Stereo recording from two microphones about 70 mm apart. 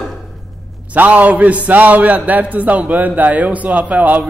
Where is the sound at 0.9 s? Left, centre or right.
Right.